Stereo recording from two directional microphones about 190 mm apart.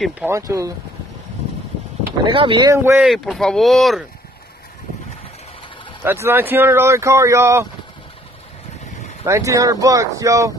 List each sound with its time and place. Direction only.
0.3 s speech: 15° right (ahead or behind)
2.2 s speech: 25° right (ahead or behind)
3.1 s speech: centre (ahead or behind)
6.0 s speech: 10° right (ahead or behind)
9.2 s speech: 15° right (ahead or behind)